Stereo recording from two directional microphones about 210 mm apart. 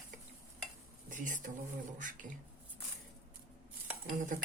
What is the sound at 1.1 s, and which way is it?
Speech, 40° right (ahead or behind).